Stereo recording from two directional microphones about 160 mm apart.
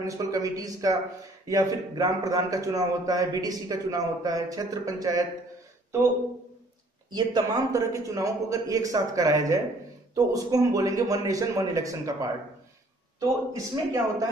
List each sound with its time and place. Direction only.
0.0 s a man's voice: 20° right (ahead or behind)
7.1 s a man's voice: 25° right (ahead or behind)